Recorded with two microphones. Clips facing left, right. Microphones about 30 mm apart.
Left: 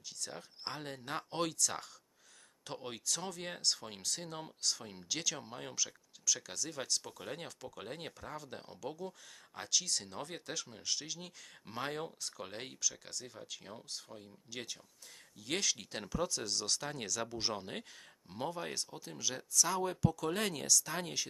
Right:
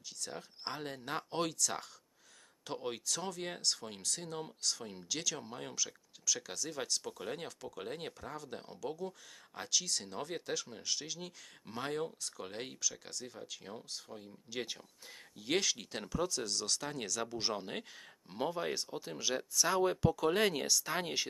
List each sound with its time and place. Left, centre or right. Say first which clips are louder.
0.2 s speech: right 1 dB; centre; by 21.3 s right